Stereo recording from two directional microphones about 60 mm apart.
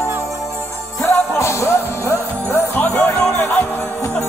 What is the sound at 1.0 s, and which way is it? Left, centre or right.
Music, left.